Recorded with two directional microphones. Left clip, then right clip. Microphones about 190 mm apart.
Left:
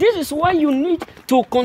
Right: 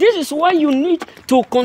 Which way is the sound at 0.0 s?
10° right (ahead or behind).